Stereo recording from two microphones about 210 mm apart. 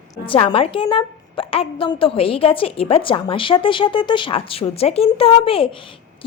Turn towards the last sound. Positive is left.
turn(degrees=25)  # may be behind; listen again after turning